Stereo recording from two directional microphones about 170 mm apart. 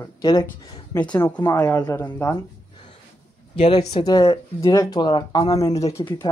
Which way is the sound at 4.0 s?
20° left (ahead or behind).